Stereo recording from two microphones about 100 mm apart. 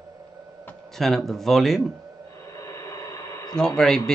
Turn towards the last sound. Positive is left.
turn(degrees=5)  # may be behind; listen again after turning